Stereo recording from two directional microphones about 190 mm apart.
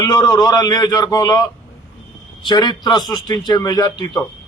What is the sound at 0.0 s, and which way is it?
A man's voice, 15° left (ahead or behind).